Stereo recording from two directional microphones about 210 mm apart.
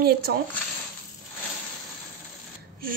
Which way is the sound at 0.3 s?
50° right (ahead or behind).